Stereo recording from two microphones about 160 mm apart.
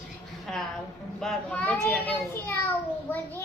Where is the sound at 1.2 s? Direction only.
5° left (ahead or behind).